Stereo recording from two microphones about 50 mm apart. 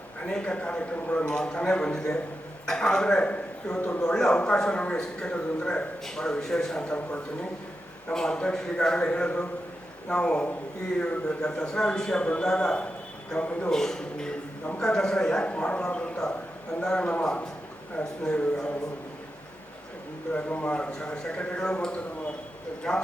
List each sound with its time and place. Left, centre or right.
0.3 s a man's voice: left
8.1 s a man's voice: centre
13.7 s a man's voice: centre
20.5 s speech: left
20.7 s a man's voice: centre